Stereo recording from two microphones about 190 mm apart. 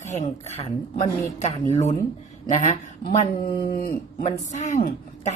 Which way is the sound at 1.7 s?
35° left (ahead or behind).